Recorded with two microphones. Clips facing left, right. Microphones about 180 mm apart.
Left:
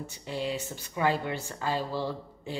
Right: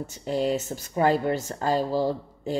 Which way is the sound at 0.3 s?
45° right (ahead or behind).